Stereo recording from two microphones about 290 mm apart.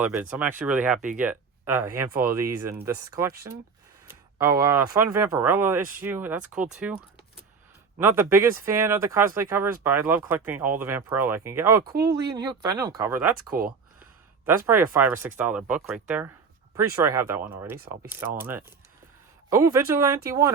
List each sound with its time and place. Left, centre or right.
0.0 s speech: centre
13.5 s speech: right
14.4 s speech: centre
17.7 s speech: right
18.1 s speech: centre